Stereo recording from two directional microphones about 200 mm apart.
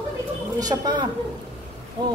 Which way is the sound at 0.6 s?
20° right (ahead or behind).